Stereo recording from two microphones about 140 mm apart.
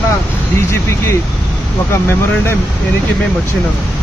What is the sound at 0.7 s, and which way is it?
Speech, 20° left (ahead or behind).